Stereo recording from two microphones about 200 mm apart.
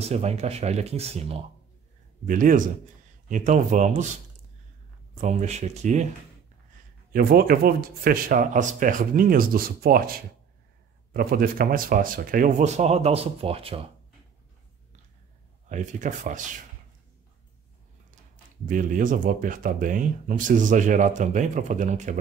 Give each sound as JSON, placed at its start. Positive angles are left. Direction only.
{"t": 0.0, "sound": "speech", "side_deg": -30}
{"t": 2.2, "sound": "speech", "side_deg": -40}
{"t": 5.2, "sound": "speech", "side_deg": -35}
{"t": 7.1, "sound": "speech", "side_deg": -45}
{"t": 15.7, "sound": "speech", "side_deg": -40}
{"t": 18.7, "sound": "speech", "side_deg": -40}